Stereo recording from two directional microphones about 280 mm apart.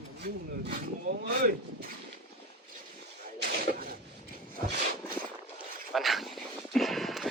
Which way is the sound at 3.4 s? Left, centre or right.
Right.